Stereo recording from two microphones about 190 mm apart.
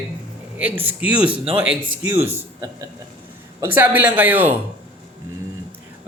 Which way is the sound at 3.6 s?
10° right (ahead or behind).